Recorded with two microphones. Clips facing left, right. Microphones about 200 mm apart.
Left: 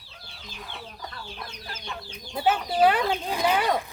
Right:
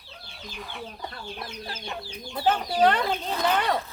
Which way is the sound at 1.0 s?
30° right (ahead or behind).